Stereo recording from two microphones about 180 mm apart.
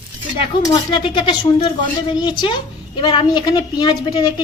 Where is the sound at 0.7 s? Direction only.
25° left (ahead or behind).